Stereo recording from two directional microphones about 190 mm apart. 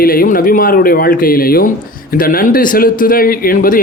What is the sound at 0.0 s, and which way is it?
Speech, 50° left (ahead or behind).